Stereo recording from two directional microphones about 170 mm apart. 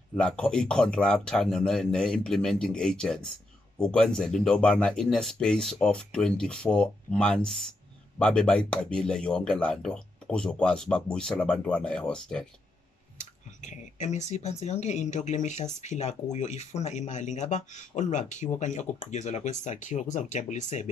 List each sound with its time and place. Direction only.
0.1 s speech: 5° left (ahead or behind)
13.2 s speech: 45° left (ahead or behind)